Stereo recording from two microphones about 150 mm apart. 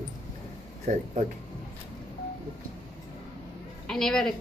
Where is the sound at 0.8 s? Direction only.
50° right (ahead or behind).